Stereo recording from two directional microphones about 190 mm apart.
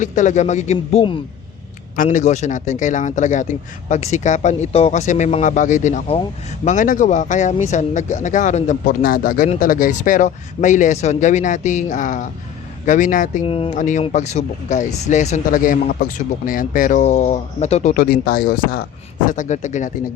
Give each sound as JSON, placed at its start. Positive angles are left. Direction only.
{"t": 0.0, "sound": "a man's voice", "side_deg": 40}
{"t": 13.4, "sound": "speech", "side_deg": 30}
{"t": 13.7, "sound": "speech", "side_deg": 40}